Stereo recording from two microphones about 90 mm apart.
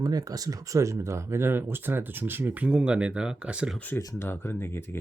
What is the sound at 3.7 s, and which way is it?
Speech, 20° left (ahead or behind).